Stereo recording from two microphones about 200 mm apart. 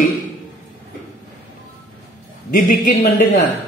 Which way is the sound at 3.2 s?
40° left (ahead or behind).